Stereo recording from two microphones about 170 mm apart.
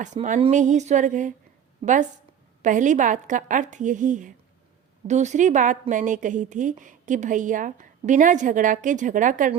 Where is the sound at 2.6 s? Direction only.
45° right (ahead or behind).